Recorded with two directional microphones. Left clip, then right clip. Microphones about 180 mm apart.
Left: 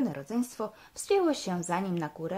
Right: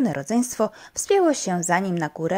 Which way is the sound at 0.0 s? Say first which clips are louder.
Right 9 dB; 30° right (ahead or behind).